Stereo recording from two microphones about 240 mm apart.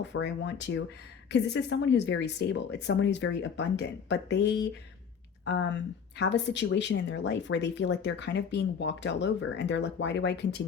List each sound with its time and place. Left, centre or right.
0.0 s speech: left